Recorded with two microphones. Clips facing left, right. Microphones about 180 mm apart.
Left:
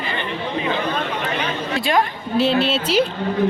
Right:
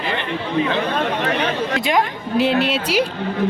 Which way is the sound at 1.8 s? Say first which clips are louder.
Left 3 dB; 15° right (ahead or behind).